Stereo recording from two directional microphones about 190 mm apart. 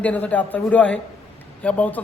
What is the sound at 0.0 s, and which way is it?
A man's voice, 10° left (ahead or behind).